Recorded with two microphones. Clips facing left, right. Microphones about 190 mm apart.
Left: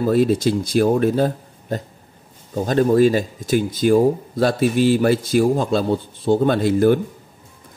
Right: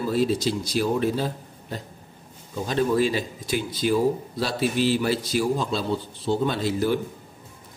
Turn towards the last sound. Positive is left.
turn(degrees=55)  # may be behind; listen again after turning